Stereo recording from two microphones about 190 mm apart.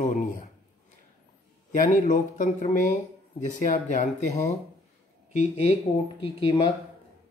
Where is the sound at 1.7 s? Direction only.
45° left (ahead or behind).